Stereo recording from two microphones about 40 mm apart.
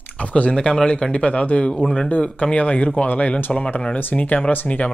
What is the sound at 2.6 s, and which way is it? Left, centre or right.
A man's voice, left.